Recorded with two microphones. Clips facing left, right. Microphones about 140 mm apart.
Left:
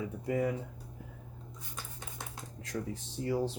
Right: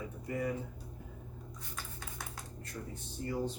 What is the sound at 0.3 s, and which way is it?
Speech, 90° left.